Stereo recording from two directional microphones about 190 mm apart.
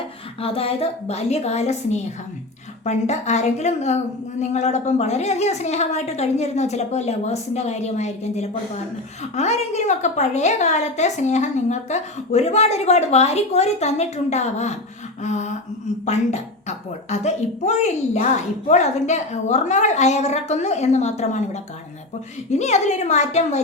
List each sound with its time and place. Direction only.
0.4 s a woman's voice: 30° left (ahead or behind)